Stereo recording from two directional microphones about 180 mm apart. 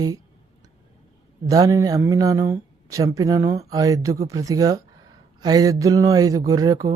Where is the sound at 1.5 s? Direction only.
20° right (ahead or behind).